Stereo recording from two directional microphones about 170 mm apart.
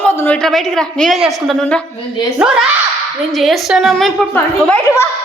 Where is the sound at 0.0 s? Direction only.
10° left (ahead or behind).